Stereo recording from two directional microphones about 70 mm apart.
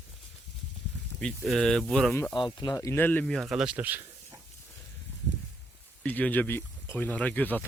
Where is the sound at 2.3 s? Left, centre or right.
Left.